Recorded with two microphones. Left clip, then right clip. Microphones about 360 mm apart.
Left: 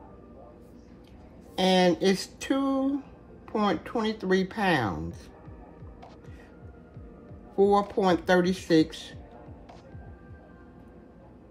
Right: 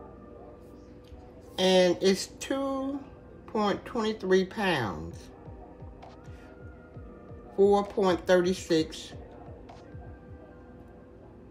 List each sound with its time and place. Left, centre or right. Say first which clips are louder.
1.5 s speech: even; centre
7.5 s speech: left 1 dB; centre